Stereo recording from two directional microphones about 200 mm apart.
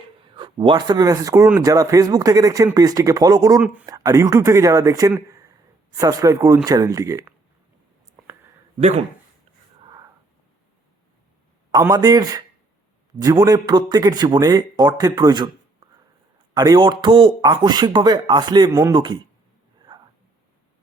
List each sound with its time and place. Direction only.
0.2 s speech: 25° right (ahead or behind)
9.8 s a sound: 20° right (ahead or behind)
11.7 s speech: 20° right (ahead or behind)
16.6 s speech: 20° right (ahead or behind)
19.9 s whispering: 25° right (ahead or behind)